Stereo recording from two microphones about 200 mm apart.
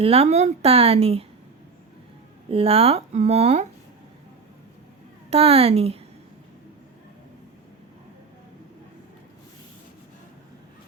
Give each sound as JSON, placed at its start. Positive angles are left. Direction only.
{"t": 0.0, "sound": "speech", "side_deg": -30}
{"t": 2.5, "sound": "speech", "side_deg": -30}
{"t": 5.3, "sound": "speech", "side_deg": -30}